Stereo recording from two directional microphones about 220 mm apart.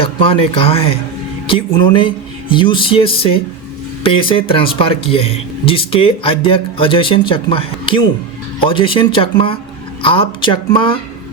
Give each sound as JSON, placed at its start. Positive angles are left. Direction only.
{"t": 0.0, "sound": "speech", "side_deg": 25}